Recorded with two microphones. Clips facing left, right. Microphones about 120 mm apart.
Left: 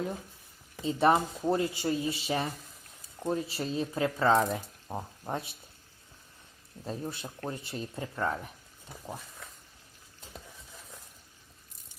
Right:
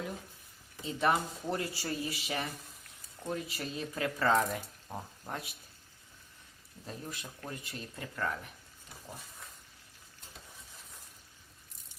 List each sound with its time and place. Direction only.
0.9 s speech: 30° left (ahead or behind)
6.8 s speech: 30° left (ahead or behind)